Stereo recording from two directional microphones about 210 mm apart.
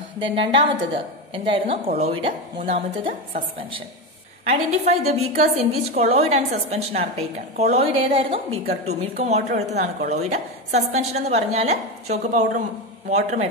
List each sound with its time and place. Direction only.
0.2 s a woman's voice: 25° right (ahead or behind)
4.5 s a woman's voice: 30° right (ahead or behind)